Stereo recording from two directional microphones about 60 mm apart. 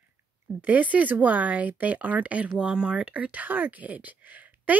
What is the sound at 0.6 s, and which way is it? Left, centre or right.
Speech, right.